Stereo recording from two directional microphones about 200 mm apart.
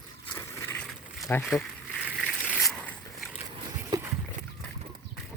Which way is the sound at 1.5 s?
5° right (ahead or behind).